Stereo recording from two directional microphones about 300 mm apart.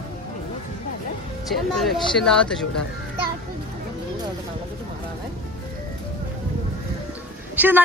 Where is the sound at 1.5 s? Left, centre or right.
Centre.